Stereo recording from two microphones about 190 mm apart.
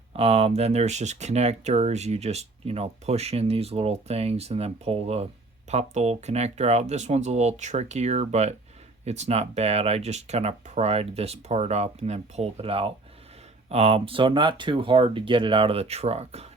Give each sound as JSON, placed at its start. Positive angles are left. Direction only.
{"t": 0.1, "sound": "speech", "side_deg": -30}